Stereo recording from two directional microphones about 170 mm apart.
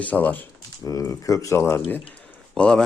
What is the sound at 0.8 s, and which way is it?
Speech, 20° left (ahead or behind).